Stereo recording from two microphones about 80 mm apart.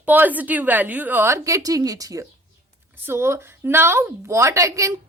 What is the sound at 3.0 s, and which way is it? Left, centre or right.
Speech, right.